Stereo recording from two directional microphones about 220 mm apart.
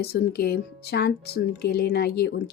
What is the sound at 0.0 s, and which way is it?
Speech, 45° left (ahead or behind).